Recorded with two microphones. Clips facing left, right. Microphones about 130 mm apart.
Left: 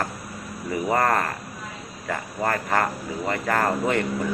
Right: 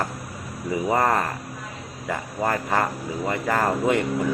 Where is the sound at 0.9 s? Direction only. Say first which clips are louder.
Even; 15° right (ahead or behind).